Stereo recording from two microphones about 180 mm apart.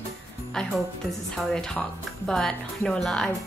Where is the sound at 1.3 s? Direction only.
5° left (ahead or behind).